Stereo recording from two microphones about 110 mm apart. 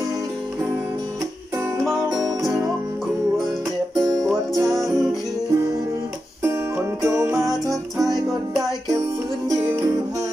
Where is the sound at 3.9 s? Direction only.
35° right (ahead or behind).